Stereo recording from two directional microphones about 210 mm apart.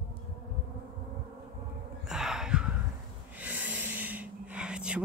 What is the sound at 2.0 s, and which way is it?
Gasp, centre (ahead or behind).